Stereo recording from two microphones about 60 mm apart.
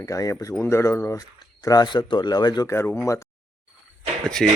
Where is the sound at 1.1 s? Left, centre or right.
Left.